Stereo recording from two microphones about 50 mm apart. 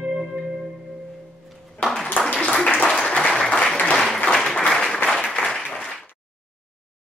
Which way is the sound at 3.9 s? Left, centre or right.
Centre.